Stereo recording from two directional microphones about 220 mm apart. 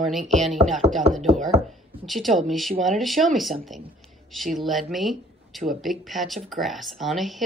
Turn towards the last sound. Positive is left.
turn(degrees=0)  # may be behind; listen again after turning